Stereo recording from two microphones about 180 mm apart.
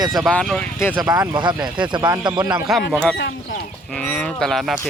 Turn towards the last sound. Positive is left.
turn(degrees=0)  # may be behind; listen again after turning